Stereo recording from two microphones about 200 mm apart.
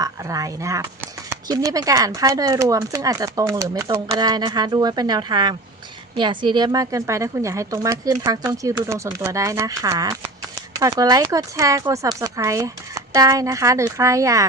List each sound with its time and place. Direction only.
0.0 s speech: 15° right (ahead or behind)